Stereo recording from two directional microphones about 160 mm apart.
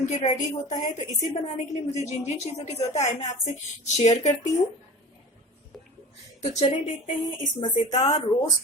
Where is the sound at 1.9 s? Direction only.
45° left (ahead or behind).